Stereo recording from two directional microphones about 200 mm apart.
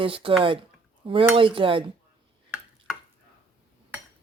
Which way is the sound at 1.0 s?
25° right (ahead or behind).